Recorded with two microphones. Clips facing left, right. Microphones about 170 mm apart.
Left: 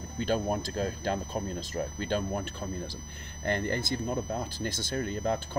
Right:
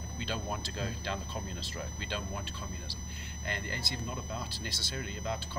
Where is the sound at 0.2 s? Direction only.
50° left (ahead or behind).